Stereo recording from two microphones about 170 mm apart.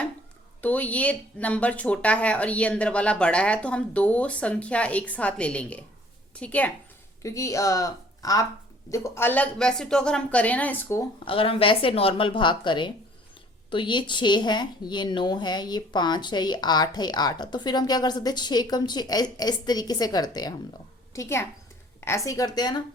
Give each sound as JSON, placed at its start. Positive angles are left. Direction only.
{"t": 0.6, "sound": "a woman's voice", "side_deg": 10}
{"t": 11.3, "sound": "a woman's voice", "side_deg": 30}